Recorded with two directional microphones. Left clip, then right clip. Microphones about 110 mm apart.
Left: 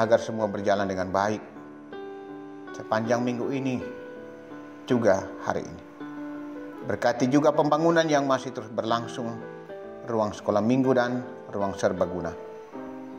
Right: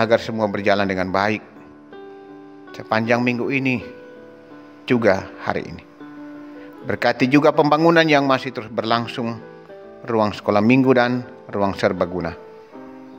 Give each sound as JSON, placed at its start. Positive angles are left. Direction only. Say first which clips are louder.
{"t": 0.0, "sound": "a man's voice", "louder": "right 5 dB", "side_deg": -60}
{"t": 2.8, "sound": "a man's voice", "louder": "right 6 dB", "side_deg": -55}
{"t": 4.8, "sound": "speech", "louder": "right 5 dB", "side_deg": -55}
{"t": 6.9, "sound": "a man's voice", "louder": "right 6 dB", "side_deg": -55}
{"t": 10.0, "sound": "a man's voice", "louder": "right 7 dB", "side_deg": -65}